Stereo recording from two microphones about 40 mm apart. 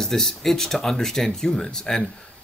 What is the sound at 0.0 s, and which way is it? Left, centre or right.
Speech, centre.